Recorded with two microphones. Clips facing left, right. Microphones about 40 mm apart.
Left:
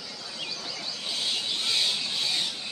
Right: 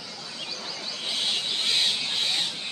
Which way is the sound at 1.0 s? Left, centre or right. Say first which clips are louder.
Right 3 dB; right.